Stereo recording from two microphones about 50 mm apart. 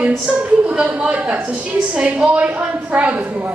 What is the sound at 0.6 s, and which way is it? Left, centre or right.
A woman's voice, right.